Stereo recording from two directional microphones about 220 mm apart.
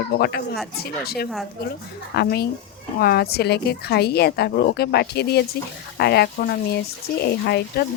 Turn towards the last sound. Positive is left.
turn(degrees=45)  # may be behind; listen again after turning